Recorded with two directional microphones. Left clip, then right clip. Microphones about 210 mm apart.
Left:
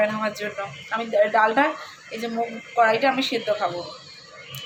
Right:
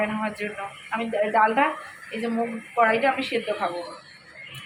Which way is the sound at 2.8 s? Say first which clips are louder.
Left 2 dB; 10° left (ahead or behind).